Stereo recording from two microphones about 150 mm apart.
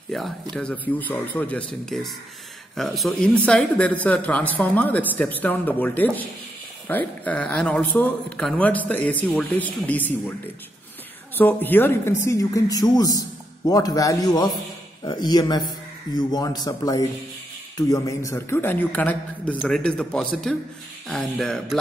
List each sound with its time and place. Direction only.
0.1 s speech: centre (ahead or behind)
11.3 s speech: 10° left (ahead or behind)